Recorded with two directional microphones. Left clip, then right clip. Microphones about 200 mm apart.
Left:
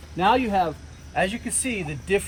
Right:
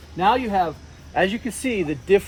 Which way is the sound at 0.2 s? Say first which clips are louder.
Right 1 dB; 25° left (ahead or behind).